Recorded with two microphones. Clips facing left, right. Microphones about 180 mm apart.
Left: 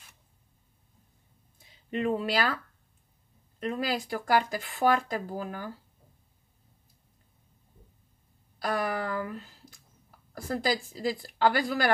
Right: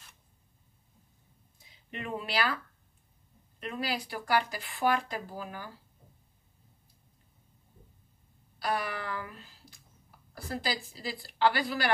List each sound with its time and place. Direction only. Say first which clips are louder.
1.9 s speech: left 8 dB; 50° left (ahead or behind)
3.5 s speech: left 4 dB; 45° left (ahead or behind)
8.5 s speech: left 3 dB; 50° left (ahead or behind)
10.3 s speech: left 6 dB; 45° left (ahead or behind)